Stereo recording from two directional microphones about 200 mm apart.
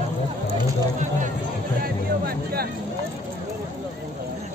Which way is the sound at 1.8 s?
50° right (ahead or behind).